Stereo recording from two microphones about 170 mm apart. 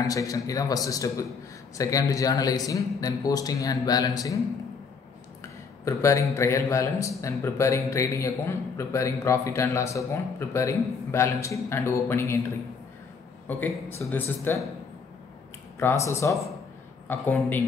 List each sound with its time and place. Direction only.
0.0 s a man's voice: 20° left (ahead or behind)
5.4 s a sound: 15° left (ahead or behind)
6.3 s speech: 15° left (ahead or behind)
15.8 s speech: 15° left (ahead or behind)